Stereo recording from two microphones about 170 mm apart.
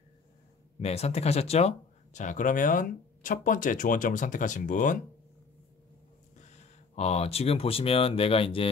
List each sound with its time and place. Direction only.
0.7 s speech: 40° left (ahead or behind)
7.0 s speech: 40° left (ahead or behind)